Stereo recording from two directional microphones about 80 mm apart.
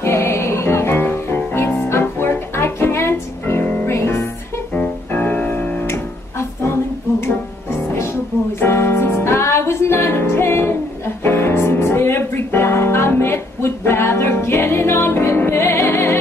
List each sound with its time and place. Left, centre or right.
0.0 s music: left
4.7 s music: left
7.9 s music: left